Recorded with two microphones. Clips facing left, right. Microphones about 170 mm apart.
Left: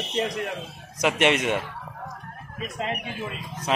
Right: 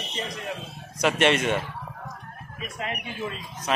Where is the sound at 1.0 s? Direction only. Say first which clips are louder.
Even; 15° left (ahead or behind).